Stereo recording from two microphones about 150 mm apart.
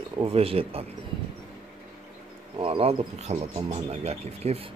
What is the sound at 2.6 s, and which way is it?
Speech, 40° right (ahead or behind).